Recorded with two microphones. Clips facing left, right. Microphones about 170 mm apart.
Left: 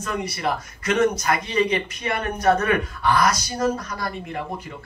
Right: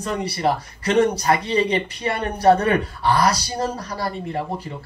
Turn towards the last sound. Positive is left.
turn(degrees=-30)  # may be behind; listen again after turning